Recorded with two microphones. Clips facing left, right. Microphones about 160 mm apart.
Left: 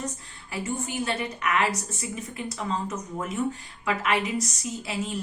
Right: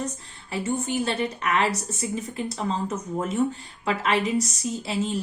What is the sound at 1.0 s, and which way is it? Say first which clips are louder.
A woman's voice: right 2 dB; 30° right (ahead or behind).